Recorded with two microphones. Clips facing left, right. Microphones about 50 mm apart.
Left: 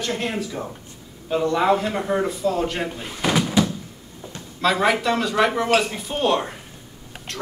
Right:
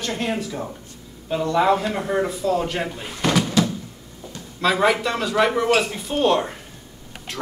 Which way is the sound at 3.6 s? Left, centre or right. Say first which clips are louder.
Left 1 dB; centre.